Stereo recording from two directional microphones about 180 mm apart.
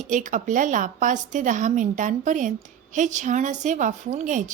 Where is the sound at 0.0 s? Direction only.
45° right (ahead or behind).